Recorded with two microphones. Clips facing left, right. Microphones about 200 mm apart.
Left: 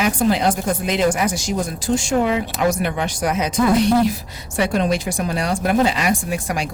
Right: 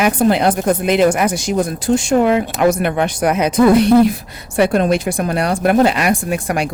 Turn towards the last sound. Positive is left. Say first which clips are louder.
# right 5 dB
turn(degrees=-60)  # may be behind; listen again after turning